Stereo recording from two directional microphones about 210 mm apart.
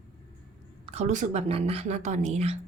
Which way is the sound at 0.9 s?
30° right (ahead or behind).